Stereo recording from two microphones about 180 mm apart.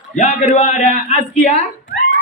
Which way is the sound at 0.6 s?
35° left (ahead or behind).